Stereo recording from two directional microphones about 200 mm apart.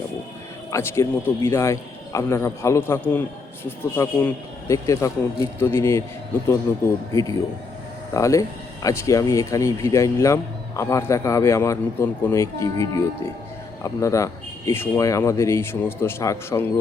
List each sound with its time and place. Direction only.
0.7 s speech: 15° left (ahead or behind)